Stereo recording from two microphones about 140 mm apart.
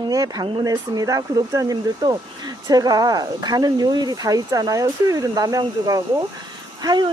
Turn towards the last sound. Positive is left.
turn(degrees=-30)  # may be behind; listen again after turning